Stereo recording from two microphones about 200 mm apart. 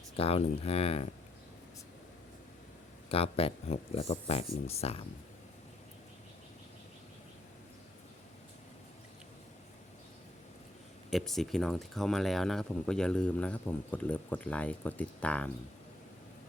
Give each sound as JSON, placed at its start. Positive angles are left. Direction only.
{"t": 0.2, "sound": "speech", "side_deg": 30}
{"t": 3.1, "sound": "speech", "side_deg": 30}
{"t": 11.1, "sound": "speech", "side_deg": 0}